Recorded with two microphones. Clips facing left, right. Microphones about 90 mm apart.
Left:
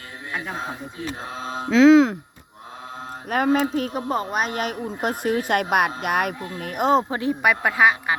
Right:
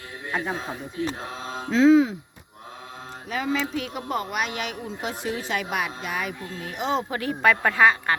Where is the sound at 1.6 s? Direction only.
90° left.